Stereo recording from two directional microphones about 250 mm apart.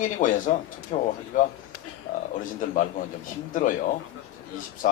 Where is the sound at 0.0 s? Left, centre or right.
Left.